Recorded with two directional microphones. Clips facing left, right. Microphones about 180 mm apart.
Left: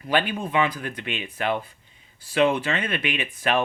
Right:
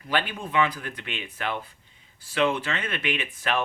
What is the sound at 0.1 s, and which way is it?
Speech, 15° left (ahead or behind).